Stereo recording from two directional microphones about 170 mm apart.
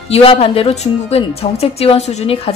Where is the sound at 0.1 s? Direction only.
35° left (ahead or behind).